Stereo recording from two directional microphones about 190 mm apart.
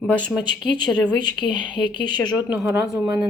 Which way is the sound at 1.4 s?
25° left (ahead or behind).